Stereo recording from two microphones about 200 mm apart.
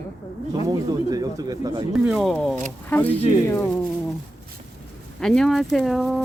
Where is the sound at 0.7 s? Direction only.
20° right (ahead or behind).